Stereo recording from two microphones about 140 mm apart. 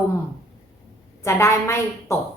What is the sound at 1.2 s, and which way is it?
Speech, 20° left (ahead or behind).